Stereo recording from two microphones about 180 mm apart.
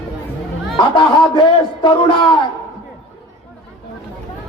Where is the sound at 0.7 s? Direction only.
25° left (ahead or behind).